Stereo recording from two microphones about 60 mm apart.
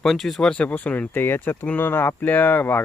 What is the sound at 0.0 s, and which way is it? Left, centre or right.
Speech, centre.